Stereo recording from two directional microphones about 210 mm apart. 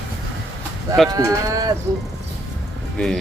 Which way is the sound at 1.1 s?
15° right (ahead or behind).